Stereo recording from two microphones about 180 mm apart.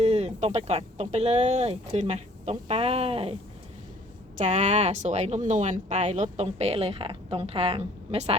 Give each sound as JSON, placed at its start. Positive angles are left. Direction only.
{"t": 0.0, "sound": "a woman's voice", "side_deg": -35}
{"t": 4.4, "sound": "a woman's voice", "side_deg": -40}